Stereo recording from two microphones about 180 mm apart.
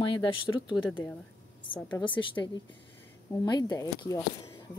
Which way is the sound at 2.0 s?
25° left (ahead or behind).